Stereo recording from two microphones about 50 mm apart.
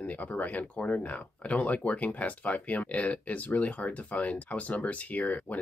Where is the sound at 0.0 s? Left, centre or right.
Left.